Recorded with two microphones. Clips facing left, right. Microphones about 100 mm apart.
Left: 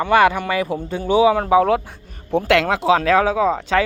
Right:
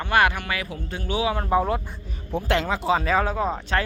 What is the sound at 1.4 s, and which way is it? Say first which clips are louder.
Speech: left 7 dB; 90° left.